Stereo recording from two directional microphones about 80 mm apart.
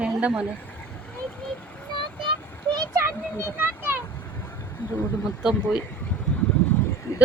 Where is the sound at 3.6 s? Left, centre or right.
Right.